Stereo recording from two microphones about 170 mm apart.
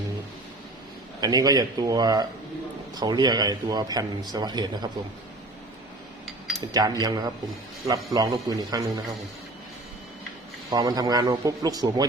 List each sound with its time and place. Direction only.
1.2 s a man's voice: 20° right (ahead or behind)
6.7 s a man's voice: 25° right (ahead or behind)
10.7 s a man's voice: 20° right (ahead or behind)